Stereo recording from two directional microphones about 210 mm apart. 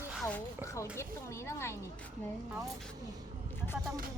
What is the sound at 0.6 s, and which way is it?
Speech, 15° left (ahead or behind).